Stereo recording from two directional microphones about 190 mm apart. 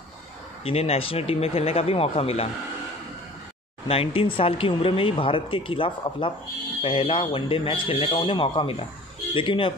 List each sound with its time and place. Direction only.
0.7 s speech: 30° left (ahead or behind)
3.8 s speech: 30° left (ahead or behind)